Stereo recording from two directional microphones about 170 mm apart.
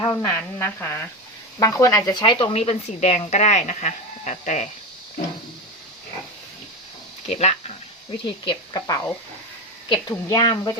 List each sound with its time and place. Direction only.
0.0 s a woman's voice: 20° left (ahead or behind); by 4.7 s 45° left (ahead or behind)
7.3 s a woman's voice: 40° left (ahead or behind)
8.4 s speech: 25° left (ahead or behind)